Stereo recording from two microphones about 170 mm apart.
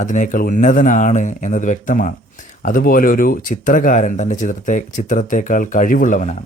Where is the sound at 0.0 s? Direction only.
45° left (ahead or behind).